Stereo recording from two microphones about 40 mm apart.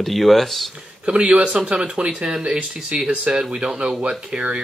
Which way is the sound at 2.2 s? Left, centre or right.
Centre.